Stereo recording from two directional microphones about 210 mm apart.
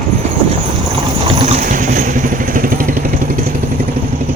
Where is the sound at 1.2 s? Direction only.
30° right (ahead or behind).